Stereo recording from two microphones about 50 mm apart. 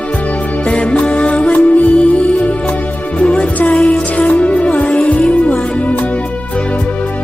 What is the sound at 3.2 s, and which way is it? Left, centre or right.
Music, left.